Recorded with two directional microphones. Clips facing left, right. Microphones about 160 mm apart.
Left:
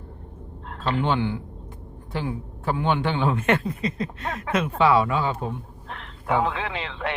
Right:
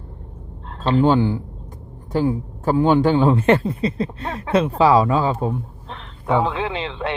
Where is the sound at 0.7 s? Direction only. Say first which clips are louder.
Right 8 dB; 30° right (ahead or behind).